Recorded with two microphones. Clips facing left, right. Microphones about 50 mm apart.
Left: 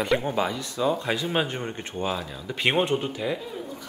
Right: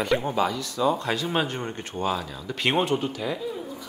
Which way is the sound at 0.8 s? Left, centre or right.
Centre.